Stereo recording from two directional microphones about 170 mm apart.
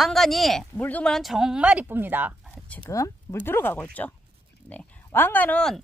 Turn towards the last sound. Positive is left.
turn(degrees=5)  # may be behind; listen again after turning